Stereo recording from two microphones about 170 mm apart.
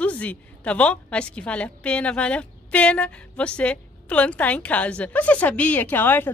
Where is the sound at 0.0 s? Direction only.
10° left (ahead or behind).